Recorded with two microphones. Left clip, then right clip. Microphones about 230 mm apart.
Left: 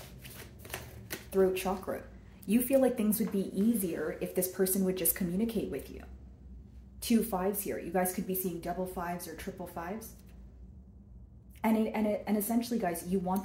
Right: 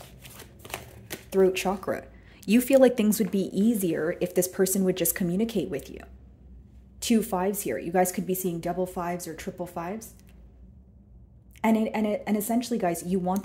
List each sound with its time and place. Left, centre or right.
0.2 s shuffling cards: right
1.3 s speech: right
11.6 s speech: right